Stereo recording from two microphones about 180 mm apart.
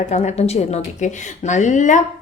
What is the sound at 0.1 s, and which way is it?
A woman's voice, 40° left (ahead or behind).